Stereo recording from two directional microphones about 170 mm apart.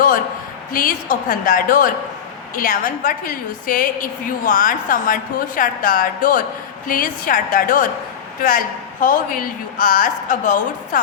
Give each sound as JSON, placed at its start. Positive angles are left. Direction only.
{"t": 0.7, "sound": "a woman's voice", "side_deg": 50}